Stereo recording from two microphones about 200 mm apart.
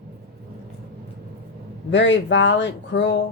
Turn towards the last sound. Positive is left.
turn(degrees=60)  # may be behind; listen again after turning